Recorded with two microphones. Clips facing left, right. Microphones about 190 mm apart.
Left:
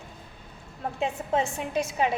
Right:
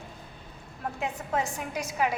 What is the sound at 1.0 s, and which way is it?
A woman's voice, 25° left (ahead or behind).